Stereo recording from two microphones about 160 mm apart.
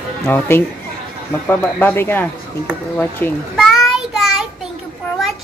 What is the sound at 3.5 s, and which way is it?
Child singing, centre (ahead or behind).